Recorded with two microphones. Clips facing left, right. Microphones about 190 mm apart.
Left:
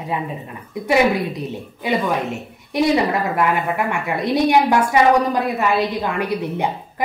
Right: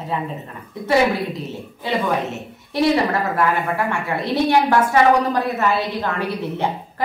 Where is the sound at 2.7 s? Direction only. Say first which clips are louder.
Left 1 dB; 15° left (ahead or behind).